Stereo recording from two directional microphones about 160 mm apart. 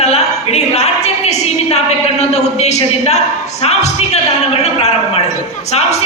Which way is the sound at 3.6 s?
40° left (ahead or behind).